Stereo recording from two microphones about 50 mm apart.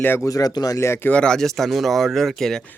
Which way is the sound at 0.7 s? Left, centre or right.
Left.